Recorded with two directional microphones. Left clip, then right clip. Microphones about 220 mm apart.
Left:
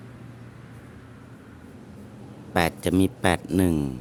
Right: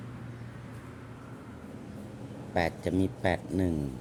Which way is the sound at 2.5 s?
30° left (ahead or behind).